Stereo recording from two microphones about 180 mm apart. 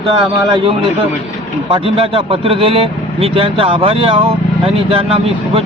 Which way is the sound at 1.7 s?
30° right (ahead or behind).